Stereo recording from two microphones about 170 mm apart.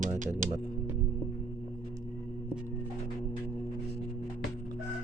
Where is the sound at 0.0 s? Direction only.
50° right (ahead or behind).